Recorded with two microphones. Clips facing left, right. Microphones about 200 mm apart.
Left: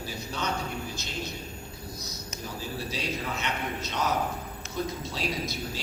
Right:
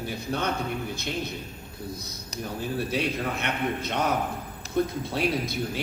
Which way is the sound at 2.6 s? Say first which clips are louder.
Right 8 dB; 60° right (ahead or behind).